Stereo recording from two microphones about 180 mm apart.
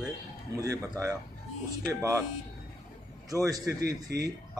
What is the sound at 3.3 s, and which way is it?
A man's voice, 20° right (ahead or behind).